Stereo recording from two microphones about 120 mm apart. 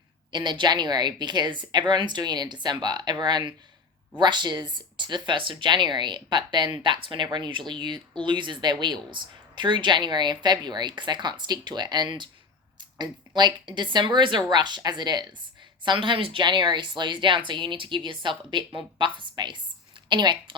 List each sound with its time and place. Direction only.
0.3 s a woman's voice: 40° right (ahead or behind)